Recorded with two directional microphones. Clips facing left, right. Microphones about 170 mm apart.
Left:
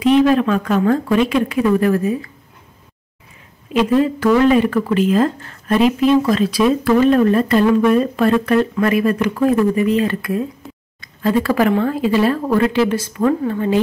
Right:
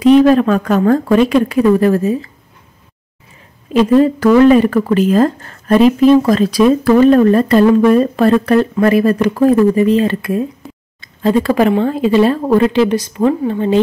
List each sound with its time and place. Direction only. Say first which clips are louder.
0.0 s speech: right 5 dB; 40° right (ahead or behind)
3.7 s speech: right 5 dB; 40° right (ahead or behind); by 13.7 s 25° right (ahead or behind)